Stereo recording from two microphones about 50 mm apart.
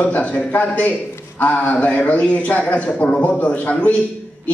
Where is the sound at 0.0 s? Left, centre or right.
Left.